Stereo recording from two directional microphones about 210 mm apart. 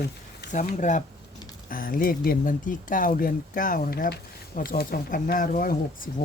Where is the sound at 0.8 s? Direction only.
35° left (ahead or behind).